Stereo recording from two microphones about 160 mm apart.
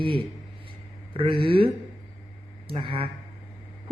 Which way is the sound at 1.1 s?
35° right (ahead or behind).